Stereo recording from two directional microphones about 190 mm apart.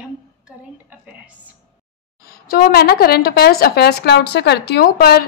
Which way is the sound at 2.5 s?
55° left (ahead or behind).